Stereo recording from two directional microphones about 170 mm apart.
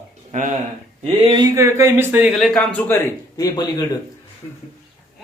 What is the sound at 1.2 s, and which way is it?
Speech, 25° right (ahead or behind).